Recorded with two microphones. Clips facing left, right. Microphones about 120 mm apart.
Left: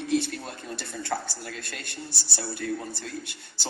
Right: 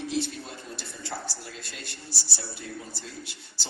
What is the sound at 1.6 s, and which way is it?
Speech, 55° left (ahead or behind).